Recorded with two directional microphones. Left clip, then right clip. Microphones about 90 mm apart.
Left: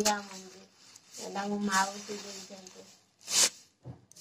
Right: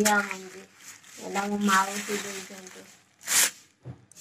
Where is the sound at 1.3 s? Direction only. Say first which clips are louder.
Right 6 dB; 20° right (ahead or behind).